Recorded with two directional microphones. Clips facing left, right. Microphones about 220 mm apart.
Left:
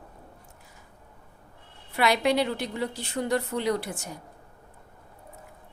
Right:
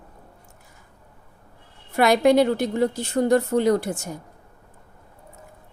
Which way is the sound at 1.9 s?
45° right (ahead or behind).